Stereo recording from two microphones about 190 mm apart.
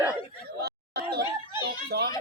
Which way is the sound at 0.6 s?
60° right (ahead or behind).